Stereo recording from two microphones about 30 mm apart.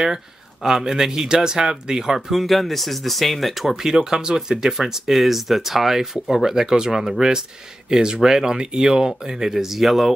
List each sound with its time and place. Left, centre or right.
0.7 s speech: centre
2.1 s speech: centre
3.8 s speech: centre